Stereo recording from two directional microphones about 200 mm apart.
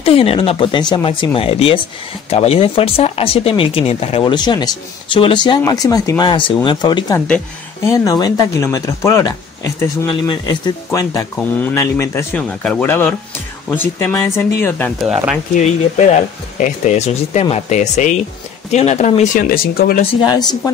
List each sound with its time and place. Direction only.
0.0 s speech: 30° left (ahead or behind)
7.2 s speech: 10° left (ahead or behind)
15.0 s speech: 5° right (ahead or behind)
15.5 s speech: 35° left (ahead or behind)
19.5 s speech: 45° left (ahead or behind)
20.2 s speech: 20° left (ahead or behind)